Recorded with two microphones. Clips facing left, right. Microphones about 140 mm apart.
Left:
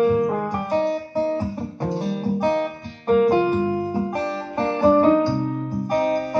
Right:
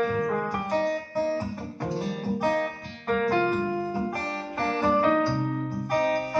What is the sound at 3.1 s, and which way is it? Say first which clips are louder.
Music: left 7 dB; 20° left (ahead or behind).